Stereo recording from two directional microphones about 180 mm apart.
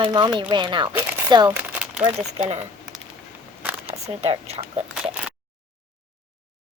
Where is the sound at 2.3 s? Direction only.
35° right (ahead or behind).